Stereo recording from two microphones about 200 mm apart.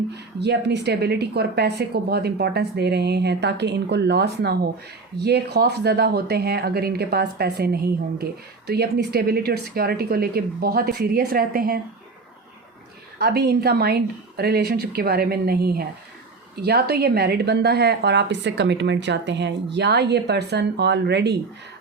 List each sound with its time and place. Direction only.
0.3 s speech: 55° right (ahead or behind)
13.1 s speech: 50° right (ahead or behind)